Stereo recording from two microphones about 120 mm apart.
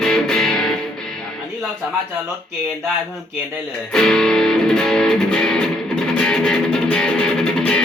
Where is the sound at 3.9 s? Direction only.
5° left (ahead or behind).